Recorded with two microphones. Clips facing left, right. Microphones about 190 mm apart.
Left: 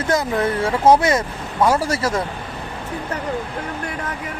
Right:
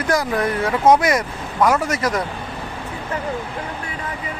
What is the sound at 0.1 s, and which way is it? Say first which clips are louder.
Speech: even; 25° left (ahead or behind).